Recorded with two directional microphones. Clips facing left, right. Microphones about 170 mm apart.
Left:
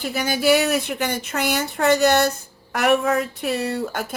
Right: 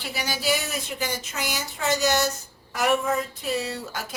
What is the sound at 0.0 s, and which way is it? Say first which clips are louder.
Speech: left 8 dB; 50° left (ahead or behind).